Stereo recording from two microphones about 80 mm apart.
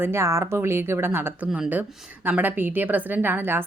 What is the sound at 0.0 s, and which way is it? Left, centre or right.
Speech, right.